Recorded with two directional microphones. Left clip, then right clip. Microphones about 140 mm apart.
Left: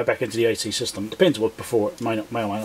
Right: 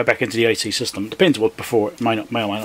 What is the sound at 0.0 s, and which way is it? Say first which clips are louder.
Speech: right 4 dB; 30° right (ahead or behind).